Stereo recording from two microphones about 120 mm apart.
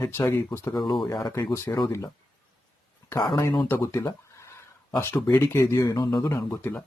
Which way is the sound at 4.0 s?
30° left (ahead or behind).